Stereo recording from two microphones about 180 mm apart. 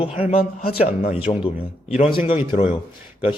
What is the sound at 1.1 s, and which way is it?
Speech, 35° left (ahead or behind).